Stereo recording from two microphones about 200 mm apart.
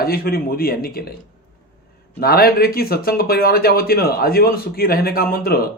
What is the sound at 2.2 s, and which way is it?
Speech, 50° left (ahead or behind).